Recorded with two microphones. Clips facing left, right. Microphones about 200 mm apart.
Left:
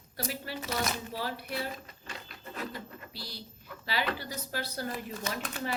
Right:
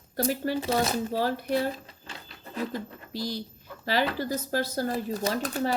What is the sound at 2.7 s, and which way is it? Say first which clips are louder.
Speech: right 8 dB; 45° right (ahead or behind).